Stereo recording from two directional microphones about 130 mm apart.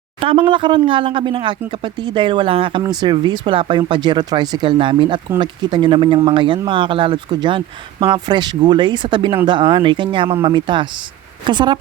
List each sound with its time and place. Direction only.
0.2 s speech: 40° right (ahead or behind)